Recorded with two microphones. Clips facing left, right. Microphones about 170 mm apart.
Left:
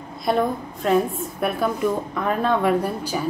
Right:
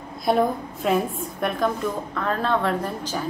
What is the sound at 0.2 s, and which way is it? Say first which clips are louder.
A woman's voice: right 1 dB; centre (ahead or behind).